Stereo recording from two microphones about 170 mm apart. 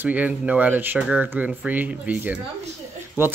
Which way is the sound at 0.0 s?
10° right (ahead or behind).